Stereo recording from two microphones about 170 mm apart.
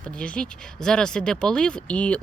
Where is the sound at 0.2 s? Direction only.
5° left (ahead or behind).